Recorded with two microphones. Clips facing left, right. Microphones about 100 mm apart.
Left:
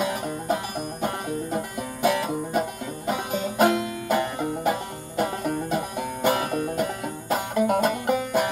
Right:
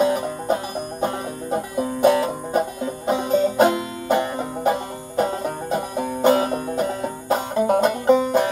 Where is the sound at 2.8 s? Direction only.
35° right (ahead or behind).